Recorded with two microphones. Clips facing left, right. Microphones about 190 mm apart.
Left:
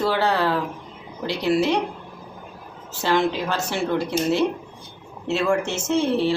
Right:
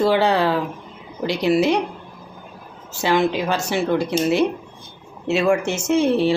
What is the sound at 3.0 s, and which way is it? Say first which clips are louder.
Speech: right 2 dB; 15° right (ahead or behind).